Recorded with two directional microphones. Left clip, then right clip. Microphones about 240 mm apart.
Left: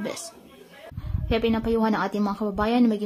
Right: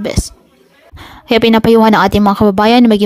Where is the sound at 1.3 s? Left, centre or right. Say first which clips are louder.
Right 15 dB; right.